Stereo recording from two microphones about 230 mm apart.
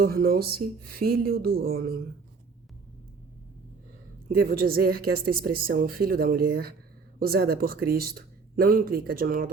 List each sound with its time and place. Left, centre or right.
0.0 s a woman's voice: right
4.4 s a woman's voice: right